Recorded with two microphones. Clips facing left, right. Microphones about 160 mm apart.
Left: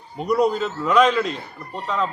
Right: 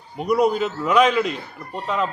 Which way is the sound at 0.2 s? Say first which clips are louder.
Right 1 dB; 5° right (ahead or behind).